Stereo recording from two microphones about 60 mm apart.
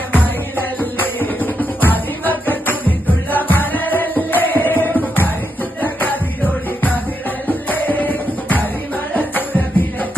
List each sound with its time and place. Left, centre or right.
0.1 s music: left